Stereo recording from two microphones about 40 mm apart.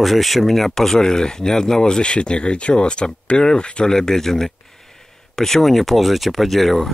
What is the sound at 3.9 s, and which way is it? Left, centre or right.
Speech, centre.